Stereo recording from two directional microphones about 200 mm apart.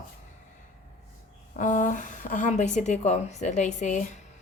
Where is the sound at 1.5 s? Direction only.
40° left (ahead or behind).